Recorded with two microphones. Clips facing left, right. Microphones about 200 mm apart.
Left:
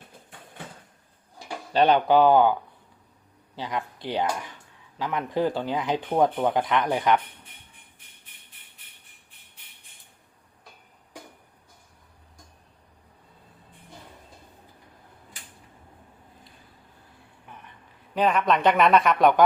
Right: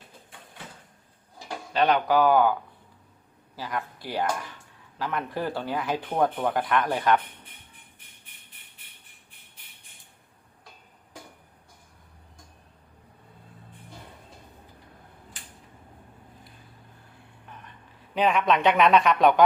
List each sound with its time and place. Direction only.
1.7 s speech: 30° left (ahead or behind)
18.2 s speech: centre (ahead or behind)